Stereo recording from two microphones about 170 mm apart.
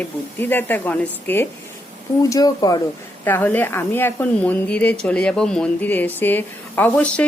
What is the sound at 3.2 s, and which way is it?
A woman's voice, 10° left (ahead or behind).